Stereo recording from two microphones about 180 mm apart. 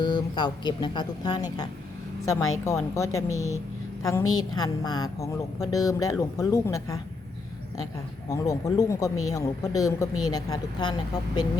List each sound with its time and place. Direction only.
0.0 s a woman's voice: 25° left (ahead or behind)
8.3 s a woman's voice: 20° left (ahead or behind)